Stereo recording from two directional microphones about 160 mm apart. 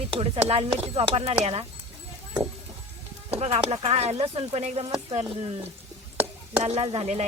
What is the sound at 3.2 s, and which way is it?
Speech, 40° right (ahead or behind).